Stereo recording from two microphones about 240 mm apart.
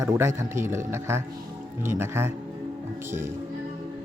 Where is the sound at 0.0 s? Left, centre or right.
Centre.